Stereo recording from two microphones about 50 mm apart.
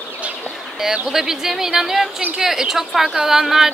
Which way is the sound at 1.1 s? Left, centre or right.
Centre.